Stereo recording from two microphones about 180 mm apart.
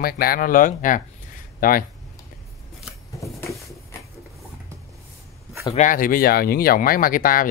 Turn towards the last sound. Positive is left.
turn(degrees=50)  # may be behind; listen again after turning